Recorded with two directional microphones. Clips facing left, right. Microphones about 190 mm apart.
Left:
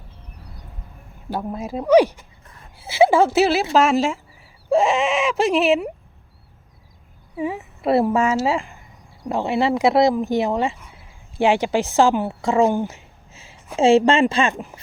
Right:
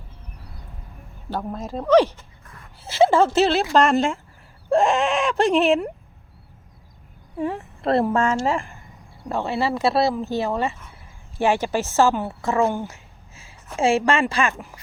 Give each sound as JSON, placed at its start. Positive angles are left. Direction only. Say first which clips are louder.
{"t": 1.3, "sound": "speech", "louder": "left 2 dB", "side_deg": 10}
{"t": 7.3, "sound": "speech", "louder": "left 1 dB", "side_deg": 5}